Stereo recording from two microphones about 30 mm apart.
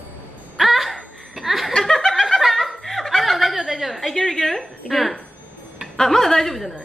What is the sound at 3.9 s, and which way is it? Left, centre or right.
Speech, centre.